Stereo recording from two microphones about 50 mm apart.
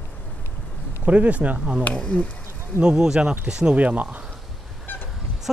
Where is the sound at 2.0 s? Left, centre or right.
Left.